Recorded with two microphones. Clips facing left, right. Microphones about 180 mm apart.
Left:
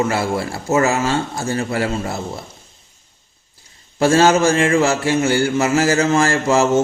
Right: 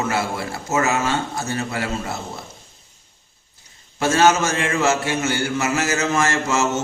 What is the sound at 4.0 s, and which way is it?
Mantra, 35° left (ahead or behind).